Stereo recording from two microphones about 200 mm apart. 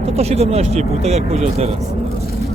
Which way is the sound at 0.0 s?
30° right (ahead or behind).